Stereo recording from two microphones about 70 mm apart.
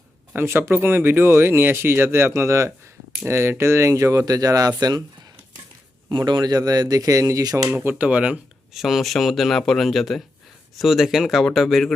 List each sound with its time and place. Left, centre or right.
0.3 s speech: right
4.8 s speech: right
6.1 s a man's voice: right
7.4 s a man's voice: right
7.7 s speech: right
8.7 s speech: centre